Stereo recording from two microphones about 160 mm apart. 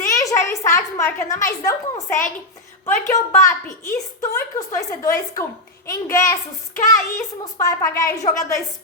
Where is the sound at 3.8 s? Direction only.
20° left (ahead or behind).